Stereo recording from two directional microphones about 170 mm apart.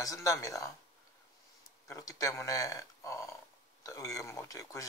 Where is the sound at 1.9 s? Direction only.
20° left (ahead or behind).